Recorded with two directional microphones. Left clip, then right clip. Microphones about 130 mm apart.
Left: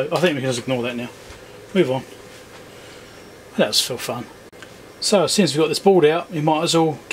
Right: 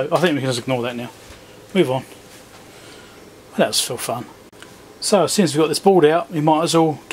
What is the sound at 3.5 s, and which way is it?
Speech, 15° right (ahead or behind).